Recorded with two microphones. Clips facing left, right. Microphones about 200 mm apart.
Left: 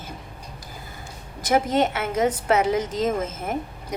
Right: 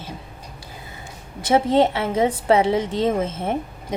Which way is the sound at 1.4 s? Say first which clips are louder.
Right 4 dB; 30° right (ahead or behind).